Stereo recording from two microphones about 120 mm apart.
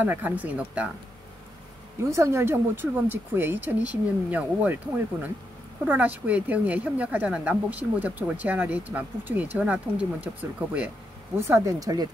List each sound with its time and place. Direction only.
0.0 s speech: 15° right (ahead or behind)
2.0 s speech: 25° right (ahead or behind)
5.9 s speech: 15° right (ahead or behind)
11.3 s speech: 20° right (ahead or behind)